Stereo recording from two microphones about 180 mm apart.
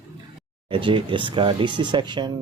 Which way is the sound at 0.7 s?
30° right (ahead or behind).